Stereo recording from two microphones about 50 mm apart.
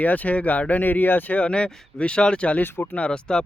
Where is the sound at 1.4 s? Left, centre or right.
Left.